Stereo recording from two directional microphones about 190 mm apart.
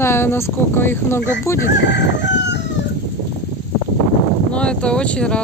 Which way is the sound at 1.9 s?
65° left (ahead or behind).